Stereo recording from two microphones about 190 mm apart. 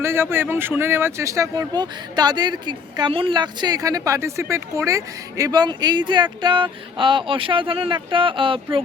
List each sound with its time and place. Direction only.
0.0 s speech: 15° right (ahead or behind)